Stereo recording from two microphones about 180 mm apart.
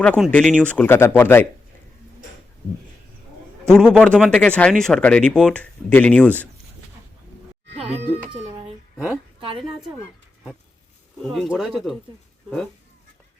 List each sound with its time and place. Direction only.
0.0 s speech: 5° left (ahead or behind)
3.7 s speech: 5° left (ahead or behind)
7.8 s cat: 35° right (ahead or behind)
11.2 s speech: centre (ahead or behind)